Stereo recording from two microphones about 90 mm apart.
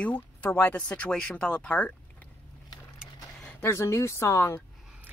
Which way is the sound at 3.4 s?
15° left (ahead or behind).